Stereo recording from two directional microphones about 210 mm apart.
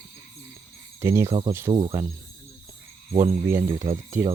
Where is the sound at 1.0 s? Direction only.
10° right (ahead or behind).